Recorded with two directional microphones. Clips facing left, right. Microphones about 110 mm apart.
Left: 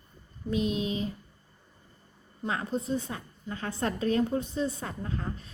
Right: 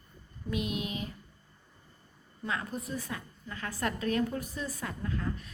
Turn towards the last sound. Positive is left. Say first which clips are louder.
# even
turn(degrees=30)  # may be behind; listen again after turning